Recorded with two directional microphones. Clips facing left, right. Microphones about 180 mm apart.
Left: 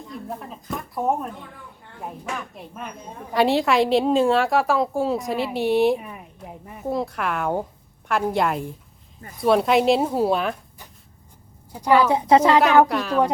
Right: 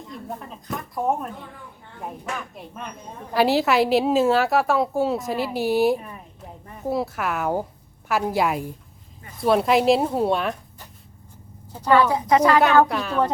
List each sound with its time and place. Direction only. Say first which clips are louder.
0.1 s a woman's voice: left 1 dB; centre (ahead or behind)
6.0 s a sound: left 1 dB; 10° left (ahead or behind)
6.8 s a woman's voice: even; 5° right (ahead or behind)
11.7 s a woman's voice: left 1 dB; 15° left (ahead or behind)
12.0 s speech: left 2 dB; 25° left (ahead or behind)
12.9 s a woman's voice: left 2 dB; centre (ahead or behind)